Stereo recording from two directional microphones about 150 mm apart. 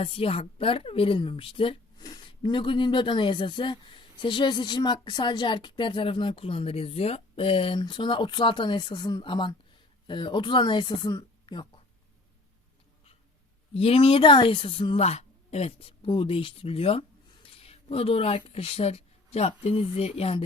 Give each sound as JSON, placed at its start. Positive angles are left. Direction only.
{"t": 0.0, "sound": "a woman's voice", "side_deg": 40}
{"t": 13.7, "sound": "a woman's voice", "side_deg": 40}